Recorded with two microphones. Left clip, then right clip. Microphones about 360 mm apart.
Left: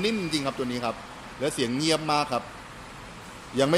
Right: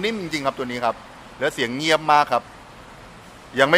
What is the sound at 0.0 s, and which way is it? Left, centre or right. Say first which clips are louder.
A man's voice: right 4 dB; centre.